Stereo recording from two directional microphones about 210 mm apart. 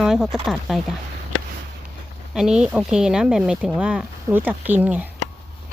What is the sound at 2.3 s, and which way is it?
Speech, 5° right (ahead or behind).